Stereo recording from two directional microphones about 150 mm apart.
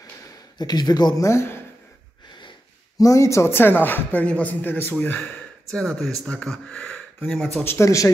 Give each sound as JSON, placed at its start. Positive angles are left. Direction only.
{"t": 0.6, "sound": "speech", "side_deg": 30}
{"t": 3.0, "sound": "speech", "side_deg": 20}
{"t": 7.6, "sound": "speech", "side_deg": 15}